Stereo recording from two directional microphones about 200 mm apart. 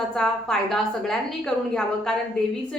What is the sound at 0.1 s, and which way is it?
A woman's voice, 5° left (ahead or behind).